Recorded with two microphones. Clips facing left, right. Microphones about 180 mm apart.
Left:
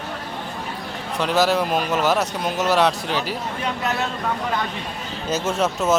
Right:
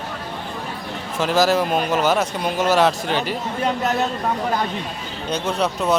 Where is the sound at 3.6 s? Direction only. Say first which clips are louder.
Right 5 dB; 40° right (ahead or behind).